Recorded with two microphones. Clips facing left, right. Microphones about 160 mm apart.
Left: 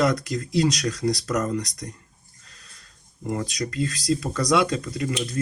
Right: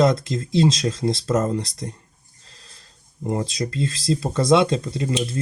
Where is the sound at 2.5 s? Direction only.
30° right (ahead or behind).